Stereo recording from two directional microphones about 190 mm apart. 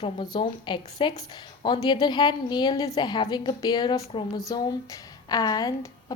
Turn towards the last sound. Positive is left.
turn(degrees=20)  # may be behind; listen again after turning